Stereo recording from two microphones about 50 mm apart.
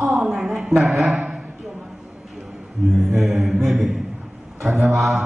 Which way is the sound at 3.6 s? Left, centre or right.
Centre.